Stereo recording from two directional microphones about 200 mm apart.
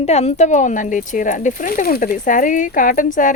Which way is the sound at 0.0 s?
30° left (ahead or behind).